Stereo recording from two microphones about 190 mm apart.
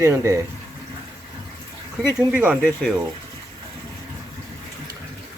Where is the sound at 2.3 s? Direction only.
10° right (ahead or behind).